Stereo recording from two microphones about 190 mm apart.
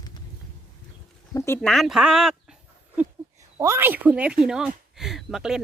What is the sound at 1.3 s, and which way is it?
Speech, 15° left (ahead or behind).